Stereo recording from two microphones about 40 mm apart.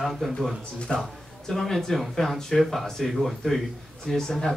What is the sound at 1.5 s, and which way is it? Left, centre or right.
Speech, centre.